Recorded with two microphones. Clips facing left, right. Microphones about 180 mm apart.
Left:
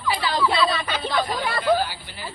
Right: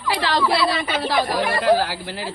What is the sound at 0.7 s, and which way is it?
Speech, 90° right.